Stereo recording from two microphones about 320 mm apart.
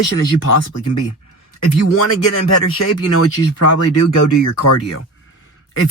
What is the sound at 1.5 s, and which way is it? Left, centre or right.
Speech, left.